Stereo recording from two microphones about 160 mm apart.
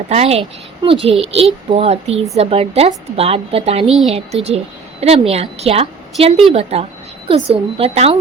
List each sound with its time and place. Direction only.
0.1 s a woman's voice: 40° right (ahead or behind)
3.8 s a woman's voice: centre (ahead or behind)
4.1 s a woman's voice: 40° right (ahead or behind)